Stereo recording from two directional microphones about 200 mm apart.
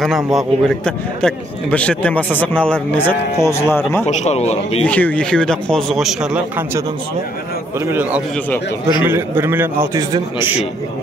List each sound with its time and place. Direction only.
0.0 s a man's voice: centre (ahead or behind)
4.1 s a man's voice: 35° left (ahead or behind)
4.8 s a man's voice: 5° left (ahead or behind)
7.8 s a man's voice: 10° right (ahead or behind)